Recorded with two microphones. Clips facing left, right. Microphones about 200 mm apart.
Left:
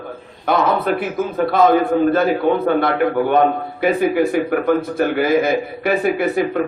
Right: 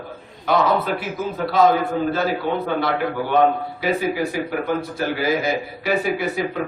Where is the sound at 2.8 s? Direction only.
55° left (ahead or behind).